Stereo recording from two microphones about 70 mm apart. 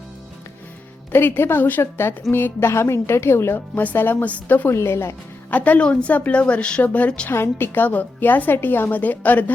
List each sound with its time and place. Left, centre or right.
1.1 s a woman's voice: left
4.7 s a woman's voice: left
5.5 s a woman's voice: left
7.3 s a woman's voice: left